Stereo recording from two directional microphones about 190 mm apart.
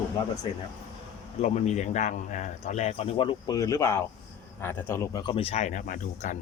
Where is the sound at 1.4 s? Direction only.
35° left (ahead or behind).